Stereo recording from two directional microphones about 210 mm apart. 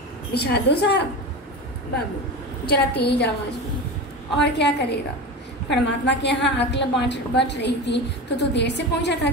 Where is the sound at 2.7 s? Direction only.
50° left (ahead or behind).